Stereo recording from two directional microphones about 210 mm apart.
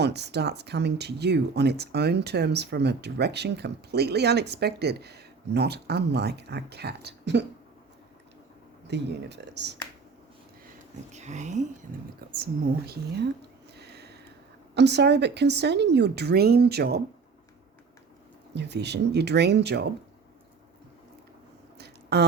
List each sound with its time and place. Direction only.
0.0 s speech: 50° right (ahead or behind)
8.9 s speech: 55° right (ahead or behind)
11.1 s speech: 35° right (ahead or behind)
12.3 s speech: 45° right (ahead or behind)
13.7 s a sound: 50° right (ahead or behind)
14.8 s speech: 55° right (ahead or behind)
18.5 s speech: 55° right (ahead or behind)
21.8 s a sound: 50° right (ahead or behind)